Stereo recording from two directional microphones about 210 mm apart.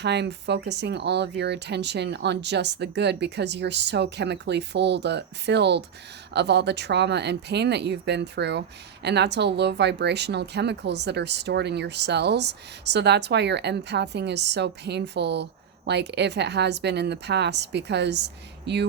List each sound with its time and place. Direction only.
0.0 s speech: 55° right (ahead or behind)